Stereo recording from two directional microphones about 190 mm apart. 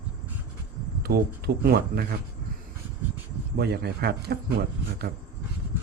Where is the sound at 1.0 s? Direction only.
55° right (ahead or behind).